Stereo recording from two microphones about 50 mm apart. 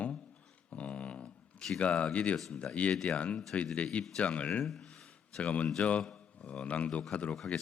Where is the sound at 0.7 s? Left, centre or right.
Left.